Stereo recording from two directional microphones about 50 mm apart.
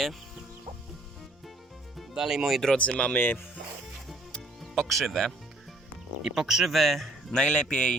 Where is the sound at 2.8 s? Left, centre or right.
Left.